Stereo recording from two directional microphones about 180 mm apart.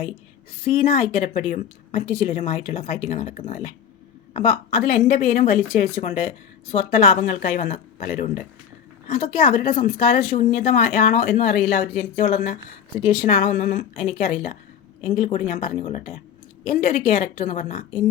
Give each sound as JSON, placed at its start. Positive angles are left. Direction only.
{"t": 0.6, "sound": "a woman's voice", "side_deg": 35}